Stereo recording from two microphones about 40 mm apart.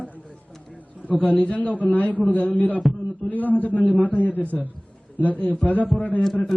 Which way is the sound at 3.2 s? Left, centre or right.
Centre.